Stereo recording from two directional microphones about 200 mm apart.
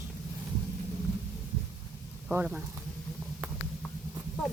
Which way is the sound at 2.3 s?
5° right (ahead or behind).